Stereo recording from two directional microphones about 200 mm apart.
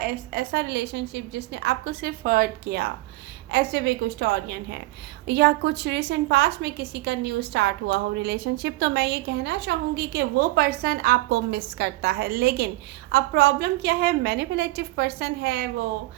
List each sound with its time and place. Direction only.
0.0 s a woman's voice: 45° right (ahead or behind)